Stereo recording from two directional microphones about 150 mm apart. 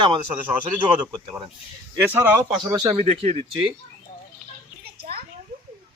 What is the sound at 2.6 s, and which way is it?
Speech, 25° right (ahead or behind).